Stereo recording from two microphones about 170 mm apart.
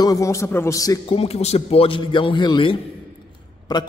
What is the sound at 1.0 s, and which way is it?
A man's voice, 35° left (ahead or behind).